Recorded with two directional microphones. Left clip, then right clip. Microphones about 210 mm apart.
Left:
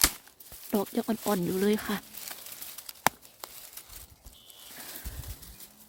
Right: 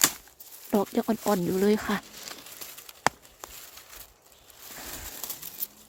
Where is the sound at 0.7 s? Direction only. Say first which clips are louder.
Right 4 dB; 5° right (ahead or behind).